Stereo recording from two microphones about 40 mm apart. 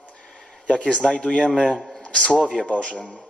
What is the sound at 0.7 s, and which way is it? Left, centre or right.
Speech, left.